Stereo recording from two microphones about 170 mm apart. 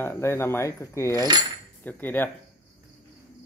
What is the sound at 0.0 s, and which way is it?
Speech, 15° left (ahead or behind).